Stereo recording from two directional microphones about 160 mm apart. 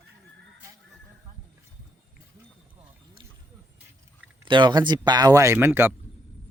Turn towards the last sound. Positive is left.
turn(degrees=-15)  # may be behind; listen again after turning